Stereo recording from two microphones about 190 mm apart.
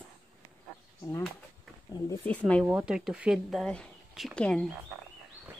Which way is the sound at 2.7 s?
5° right (ahead or behind).